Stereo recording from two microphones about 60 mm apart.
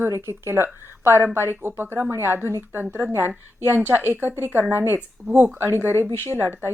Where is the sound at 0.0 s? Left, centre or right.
Right.